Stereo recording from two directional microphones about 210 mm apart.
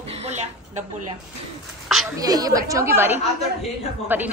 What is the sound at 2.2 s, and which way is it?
A woman's voice, 15° right (ahead or behind).